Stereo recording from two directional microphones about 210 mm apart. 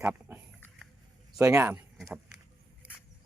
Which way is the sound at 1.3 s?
10° right (ahead or behind).